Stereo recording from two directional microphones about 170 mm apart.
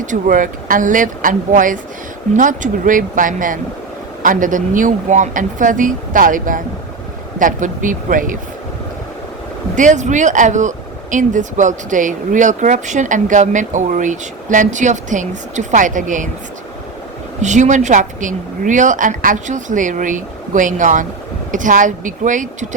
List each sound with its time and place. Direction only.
0.0 s speech: 50° right (ahead or behind)
9.7 s speech: 45° right (ahead or behind)
17.4 s speech: 45° right (ahead or behind)